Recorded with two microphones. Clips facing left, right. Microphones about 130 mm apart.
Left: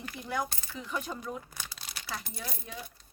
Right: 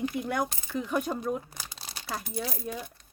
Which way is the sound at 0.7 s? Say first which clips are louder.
Right 7 dB; 50° right (ahead or behind).